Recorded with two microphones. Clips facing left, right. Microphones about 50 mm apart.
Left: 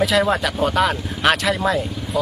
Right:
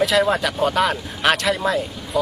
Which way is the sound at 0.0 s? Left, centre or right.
Centre.